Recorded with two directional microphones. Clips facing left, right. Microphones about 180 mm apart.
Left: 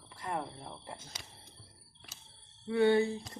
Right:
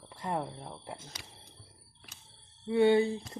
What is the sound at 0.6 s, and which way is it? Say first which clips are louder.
Speech: right 2 dB; 5° right (ahead or behind).